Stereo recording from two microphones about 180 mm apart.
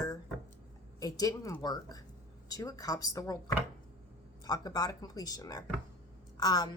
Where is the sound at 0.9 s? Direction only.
20° left (ahead or behind).